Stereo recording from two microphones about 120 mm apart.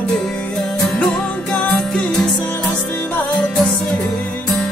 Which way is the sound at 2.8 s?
15° left (ahead or behind).